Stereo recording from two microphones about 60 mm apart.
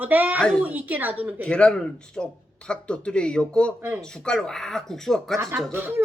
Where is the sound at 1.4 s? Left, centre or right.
Centre.